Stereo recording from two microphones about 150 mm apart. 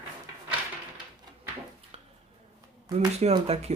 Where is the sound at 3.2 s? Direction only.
45° right (ahead or behind).